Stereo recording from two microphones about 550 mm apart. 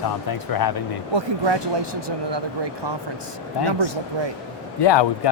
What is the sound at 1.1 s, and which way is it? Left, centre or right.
Speech, right.